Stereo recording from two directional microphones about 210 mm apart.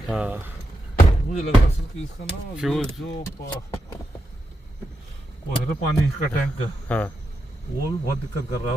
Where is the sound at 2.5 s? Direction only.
Centre (ahead or behind).